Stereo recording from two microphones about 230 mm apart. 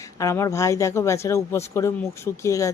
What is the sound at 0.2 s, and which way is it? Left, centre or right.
A woman's voice, centre.